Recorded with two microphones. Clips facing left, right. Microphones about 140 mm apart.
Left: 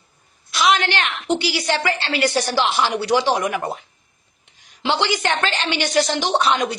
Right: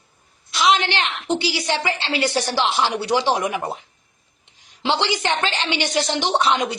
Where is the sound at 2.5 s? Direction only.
25° right (ahead or behind).